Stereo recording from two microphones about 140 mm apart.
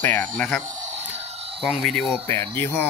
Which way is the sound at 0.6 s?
60° right (ahead or behind).